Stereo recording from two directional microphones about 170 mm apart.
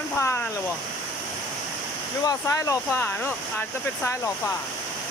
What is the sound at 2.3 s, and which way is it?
Speech, 20° left (ahead or behind).